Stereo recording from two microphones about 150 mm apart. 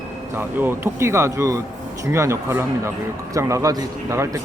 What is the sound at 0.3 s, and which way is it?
A man's voice, 15° right (ahead or behind).